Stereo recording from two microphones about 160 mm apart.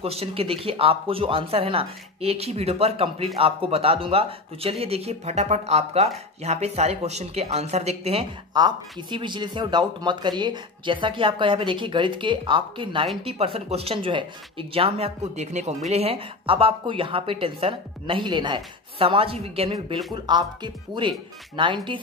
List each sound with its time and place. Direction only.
0.0 s speech: 40° right (ahead or behind)
8.5 s speech: 25° right (ahead or behind)